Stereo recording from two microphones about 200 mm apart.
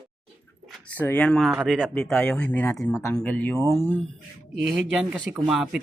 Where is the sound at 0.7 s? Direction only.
10° left (ahead or behind).